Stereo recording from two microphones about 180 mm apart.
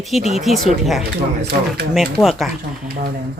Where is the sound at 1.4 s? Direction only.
60° right (ahead or behind).